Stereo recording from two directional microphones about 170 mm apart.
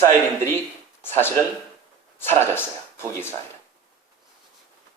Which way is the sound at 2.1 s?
15° left (ahead or behind).